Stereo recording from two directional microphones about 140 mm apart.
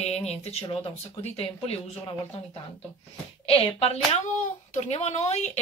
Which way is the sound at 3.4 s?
40° left (ahead or behind).